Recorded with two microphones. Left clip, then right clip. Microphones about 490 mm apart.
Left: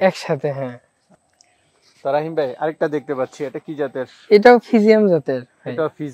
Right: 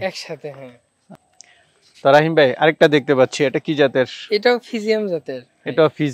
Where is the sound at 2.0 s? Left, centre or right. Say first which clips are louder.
Right 7 dB; right.